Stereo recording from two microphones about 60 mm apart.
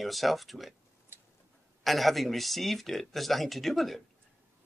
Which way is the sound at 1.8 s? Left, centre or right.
Centre.